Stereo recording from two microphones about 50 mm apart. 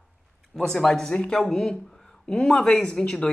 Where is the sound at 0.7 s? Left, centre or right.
Centre.